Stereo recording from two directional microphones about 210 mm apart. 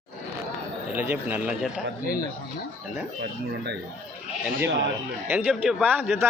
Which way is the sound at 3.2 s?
50° right (ahead or behind).